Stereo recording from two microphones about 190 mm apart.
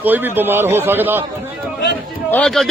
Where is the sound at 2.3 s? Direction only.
5° left (ahead or behind).